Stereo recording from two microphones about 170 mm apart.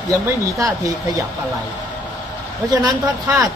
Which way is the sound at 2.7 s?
25° right (ahead or behind).